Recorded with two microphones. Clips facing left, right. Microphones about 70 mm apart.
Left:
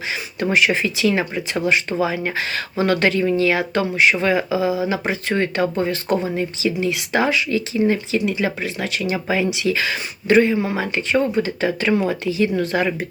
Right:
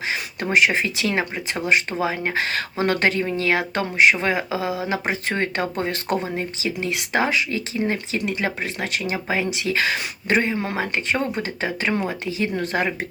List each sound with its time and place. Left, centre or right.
0.5 s speech: right
4.9 s speech: right
6.3 s speech: right
8.2 s speech: right
11.3 s speech: right